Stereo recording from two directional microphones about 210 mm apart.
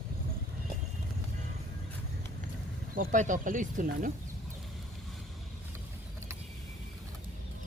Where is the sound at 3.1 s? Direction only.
35° right (ahead or behind).